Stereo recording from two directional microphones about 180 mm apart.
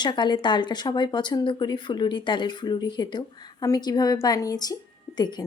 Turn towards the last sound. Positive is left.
turn(degrees=25)  # may be behind; listen again after turning